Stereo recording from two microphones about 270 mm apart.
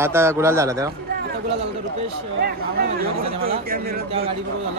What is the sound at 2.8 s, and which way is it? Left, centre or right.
Speech, right.